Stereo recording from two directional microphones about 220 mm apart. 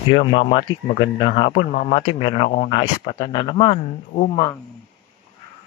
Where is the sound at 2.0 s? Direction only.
25° left (ahead or behind).